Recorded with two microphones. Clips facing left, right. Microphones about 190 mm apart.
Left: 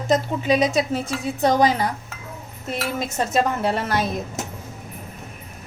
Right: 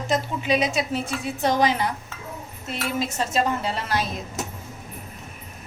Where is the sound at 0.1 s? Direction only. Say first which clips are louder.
Left 4 dB; 40° left (ahead or behind).